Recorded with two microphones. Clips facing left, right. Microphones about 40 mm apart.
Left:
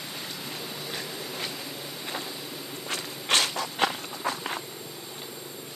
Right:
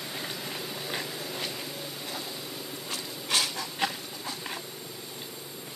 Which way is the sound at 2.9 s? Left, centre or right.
Left.